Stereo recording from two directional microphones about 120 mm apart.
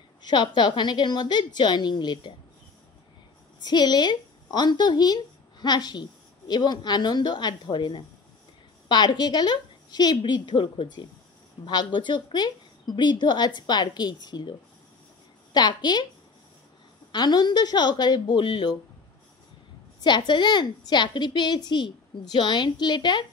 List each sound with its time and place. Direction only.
0.2 s a woman's voice: 40° left (ahead or behind)
3.6 s a woman's voice: 40° left (ahead or behind)
15.5 s a woman's voice: 35° left (ahead or behind)
17.1 s a woman's voice: 35° left (ahead or behind)
20.0 s a woman's voice: 40° left (ahead or behind)